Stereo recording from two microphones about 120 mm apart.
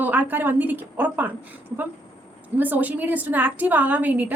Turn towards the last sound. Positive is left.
turn(degrees=-15)  # may be behind; listen again after turning